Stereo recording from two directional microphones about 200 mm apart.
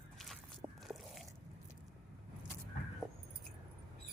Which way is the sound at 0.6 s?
20° right (ahead or behind).